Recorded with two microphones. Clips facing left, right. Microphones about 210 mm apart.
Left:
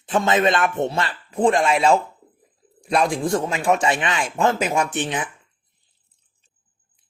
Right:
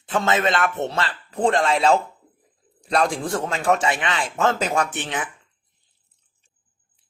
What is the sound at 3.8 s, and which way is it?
Speech, 25° left (ahead or behind).